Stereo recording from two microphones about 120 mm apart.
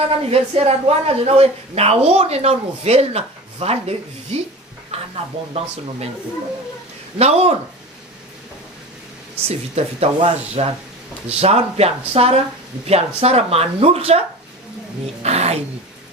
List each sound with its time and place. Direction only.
0.3 s speech: 60° right (ahead or behind)
4.9 s a sound: 60° right (ahead or behind)
7.2 s speech: 60° right (ahead or behind)
9.5 s speech: 60° right (ahead or behind)